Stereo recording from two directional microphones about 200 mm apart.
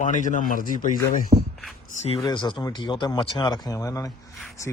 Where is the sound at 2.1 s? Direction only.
20° left (ahead or behind).